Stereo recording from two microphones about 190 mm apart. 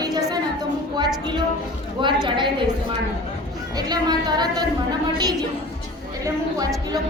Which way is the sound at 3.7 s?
20° right (ahead or behind).